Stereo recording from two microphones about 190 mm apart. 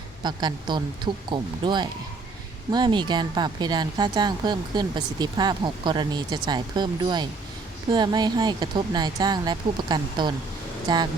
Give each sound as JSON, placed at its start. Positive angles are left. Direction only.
{"t": 0.2, "sound": "speech", "side_deg": -20}